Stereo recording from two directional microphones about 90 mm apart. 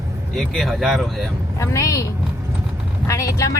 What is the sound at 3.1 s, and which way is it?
Speech, 35° left (ahead or behind).